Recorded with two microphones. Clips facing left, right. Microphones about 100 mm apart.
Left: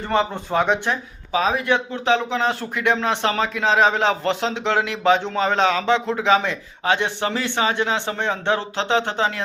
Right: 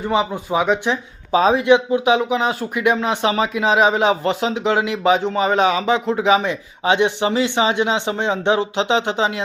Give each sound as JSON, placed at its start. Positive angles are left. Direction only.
{"t": 0.0, "sound": "speech", "side_deg": -10}
{"t": 1.3, "sound": "speech", "side_deg": -30}
{"t": 1.6, "sound": "speech", "side_deg": -15}